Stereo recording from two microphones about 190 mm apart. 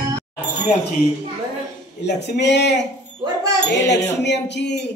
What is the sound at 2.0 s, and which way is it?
Music, 65° left (ahead or behind).